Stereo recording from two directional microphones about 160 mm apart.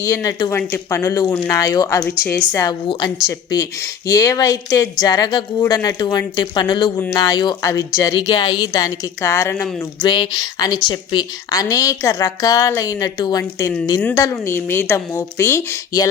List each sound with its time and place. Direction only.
0.0 s speech: 20° left (ahead or behind)
10.1 s speech: 30° left (ahead or behind)